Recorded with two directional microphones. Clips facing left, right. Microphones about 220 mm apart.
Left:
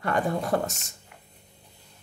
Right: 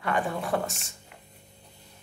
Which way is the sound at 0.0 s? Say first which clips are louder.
Left 2 dB; 40° left (ahead or behind).